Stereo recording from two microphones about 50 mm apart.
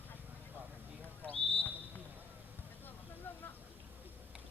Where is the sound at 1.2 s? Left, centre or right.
Left.